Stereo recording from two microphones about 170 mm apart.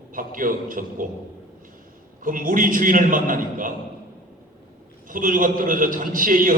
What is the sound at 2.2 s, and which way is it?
A man's voice, 50° right (ahead or behind).